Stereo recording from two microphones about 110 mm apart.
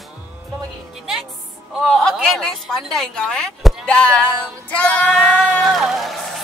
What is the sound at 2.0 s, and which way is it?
Speech, 5° left (ahead or behind).